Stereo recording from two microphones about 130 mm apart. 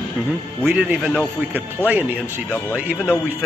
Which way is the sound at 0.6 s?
10° right (ahead or behind).